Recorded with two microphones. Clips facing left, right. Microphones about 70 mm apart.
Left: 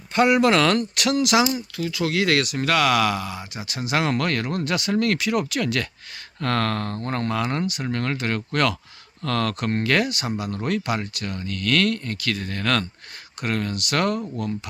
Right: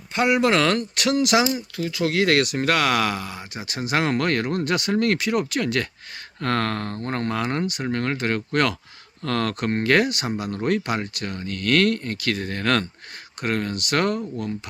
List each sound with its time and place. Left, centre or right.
0.1 s speech: centre
6.4 s mantra: right
9.2 s speech: right